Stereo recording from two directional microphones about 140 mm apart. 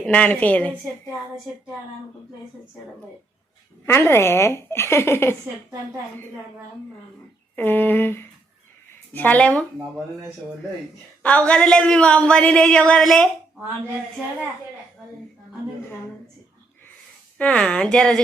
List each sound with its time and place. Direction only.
0.0 s a woman's voice: 10° left (ahead or behind)
3.8 s a woman's voice: 15° left (ahead or behind)
7.5 s a woman's voice: 15° left (ahead or behind)
11.2 s a woman's voice: 10° left (ahead or behind)
17.3 s a woman's voice: 10° left (ahead or behind)